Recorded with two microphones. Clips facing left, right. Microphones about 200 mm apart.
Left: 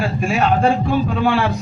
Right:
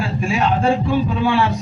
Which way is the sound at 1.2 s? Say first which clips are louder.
Even; 60° left (ahead or behind).